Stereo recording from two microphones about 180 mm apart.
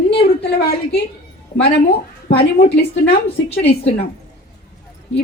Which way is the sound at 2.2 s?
60° left (ahead or behind).